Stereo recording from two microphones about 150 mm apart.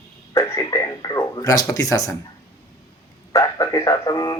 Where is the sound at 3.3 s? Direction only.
20° left (ahead or behind).